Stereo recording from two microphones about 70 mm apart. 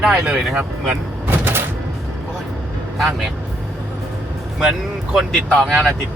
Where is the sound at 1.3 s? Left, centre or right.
Right.